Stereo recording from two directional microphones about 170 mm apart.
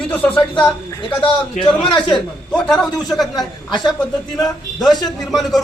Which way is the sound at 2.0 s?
5° left (ahead or behind).